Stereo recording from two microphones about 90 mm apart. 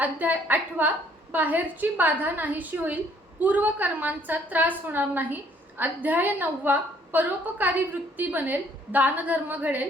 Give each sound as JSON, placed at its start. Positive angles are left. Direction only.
{"t": 0.0, "sound": "a woman's voice", "side_deg": -20}